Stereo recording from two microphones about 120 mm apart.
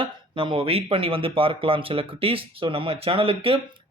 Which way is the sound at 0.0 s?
45° right (ahead or behind).